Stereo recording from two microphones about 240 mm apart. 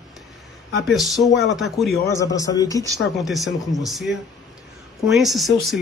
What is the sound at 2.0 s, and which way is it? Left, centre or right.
Speech, centre.